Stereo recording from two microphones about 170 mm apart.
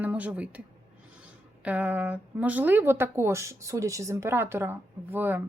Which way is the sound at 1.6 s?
10° right (ahead or behind).